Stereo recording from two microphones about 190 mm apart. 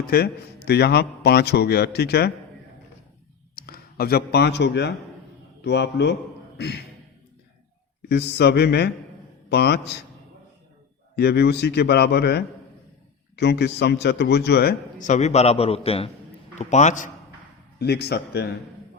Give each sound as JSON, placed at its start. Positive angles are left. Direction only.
{"t": 0.1, "sound": "a man's voice", "side_deg": 55}
{"t": 3.5, "sound": "a man's voice", "side_deg": 50}
{"t": 8.1, "sound": "a man's voice", "side_deg": 60}
{"t": 11.2, "sound": "a man's voice", "side_deg": 55}
{"t": 17.7, "sound": "a man's voice", "side_deg": 60}